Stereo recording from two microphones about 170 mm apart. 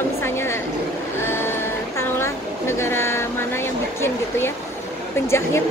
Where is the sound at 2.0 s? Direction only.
15° left (ahead or behind).